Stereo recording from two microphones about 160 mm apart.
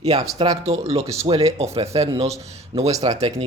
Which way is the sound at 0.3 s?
25° right (ahead or behind).